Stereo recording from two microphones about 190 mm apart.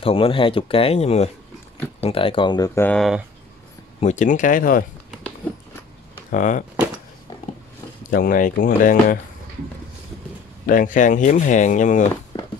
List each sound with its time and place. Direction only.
0.0 s speech: 30° left (ahead or behind); by 3.3 s centre (ahead or behind)
4.0 s speech: 40° left (ahead or behind)
6.3 s speech: 40° left (ahead or behind)
8.1 s speech: 45° left (ahead or behind)
10.7 s speech: 45° left (ahead or behind)
12.3 s a sound: 20° left (ahead or behind)